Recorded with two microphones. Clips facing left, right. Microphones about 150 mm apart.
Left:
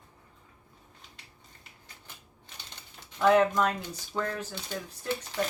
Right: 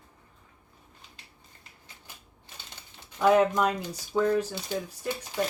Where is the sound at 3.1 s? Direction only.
10° right (ahead or behind).